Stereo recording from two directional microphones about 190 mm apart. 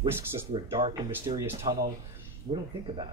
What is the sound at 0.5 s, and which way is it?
Speech, 30° right (ahead or behind).